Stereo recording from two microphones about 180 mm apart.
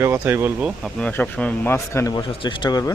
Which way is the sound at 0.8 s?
Centre (ahead or behind).